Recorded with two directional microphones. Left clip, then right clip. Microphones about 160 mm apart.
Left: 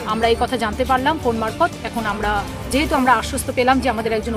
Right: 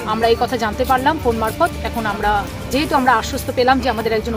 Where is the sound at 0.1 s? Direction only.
5° left (ahead or behind).